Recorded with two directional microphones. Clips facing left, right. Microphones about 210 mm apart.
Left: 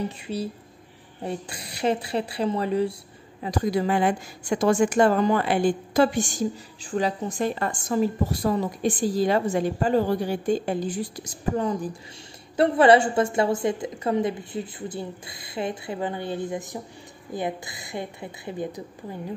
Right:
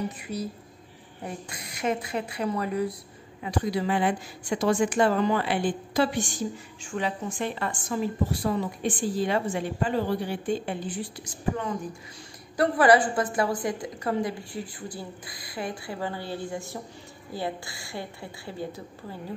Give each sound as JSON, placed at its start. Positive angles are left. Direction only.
{"t": 0.2, "sound": "a woman's voice", "side_deg": 30}
{"t": 3.4, "sound": "a woman's voice", "side_deg": 45}
{"t": 12.5, "sound": "a woman's voice", "side_deg": 25}